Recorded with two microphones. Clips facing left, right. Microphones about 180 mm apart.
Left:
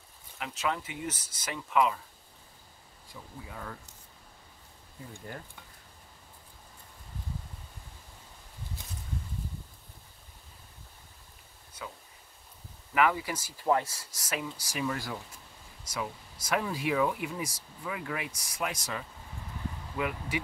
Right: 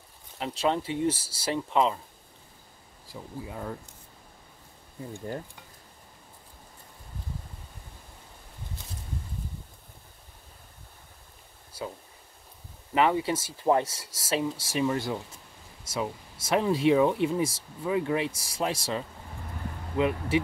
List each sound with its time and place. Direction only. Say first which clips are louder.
0.4 s speech: right 6 dB; 30° right (ahead or behind)
3.1 s speech: right 7 dB; 25° right (ahead or behind)
12.9 s speech: right 3 dB; 25° right (ahead or behind)